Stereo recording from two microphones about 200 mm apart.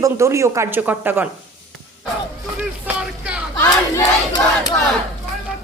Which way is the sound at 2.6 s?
5° right (ahead or behind).